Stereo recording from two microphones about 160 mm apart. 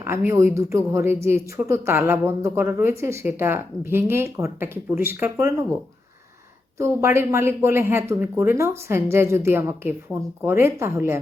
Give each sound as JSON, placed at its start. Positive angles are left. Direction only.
{"t": 0.0, "sound": "a woman's voice", "side_deg": -15}
{"t": 6.7, "sound": "a woman's voice", "side_deg": -15}